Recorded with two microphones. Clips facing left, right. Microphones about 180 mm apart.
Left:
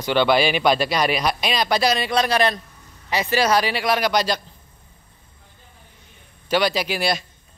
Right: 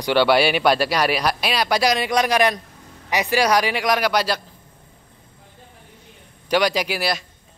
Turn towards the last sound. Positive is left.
turn(degrees=-5)  # may be behind; listen again after turning